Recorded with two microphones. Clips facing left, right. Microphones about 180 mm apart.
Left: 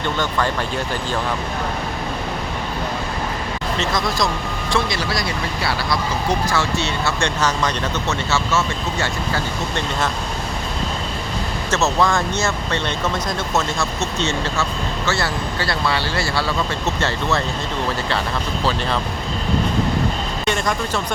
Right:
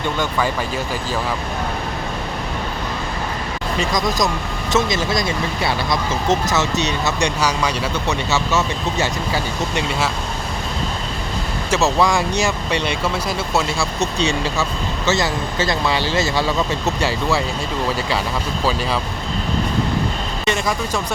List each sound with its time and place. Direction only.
0.2 s speech: 10° right (ahead or behind)
3.8 s speech: 15° right (ahead or behind)
11.7 s speech: 10° right (ahead or behind)
20.4 s speech: 5° right (ahead or behind)